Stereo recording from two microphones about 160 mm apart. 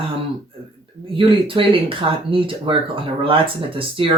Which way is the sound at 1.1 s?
35° right (ahead or behind).